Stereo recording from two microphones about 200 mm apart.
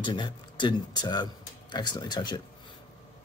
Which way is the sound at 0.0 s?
25° left (ahead or behind).